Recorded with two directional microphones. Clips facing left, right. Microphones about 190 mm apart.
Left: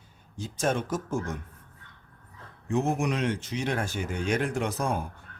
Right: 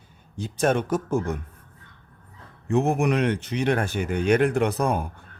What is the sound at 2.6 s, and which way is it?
Speech, 60° right (ahead or behind).